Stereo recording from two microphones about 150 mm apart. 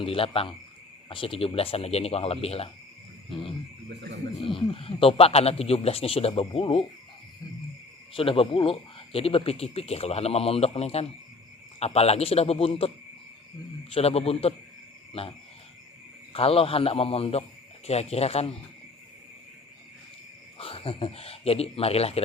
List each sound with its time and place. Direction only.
0.0 s speech: 40° left (ahead or behind)
8.1 s speech: 40° left (ahead or behind)
13.9 s speech: 45° left (ahead or behind)
20.6 s speech: 40° left (ahead or behind)